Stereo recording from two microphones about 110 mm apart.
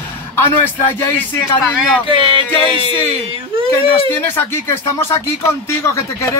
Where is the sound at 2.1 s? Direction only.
50° right (ahead or behind).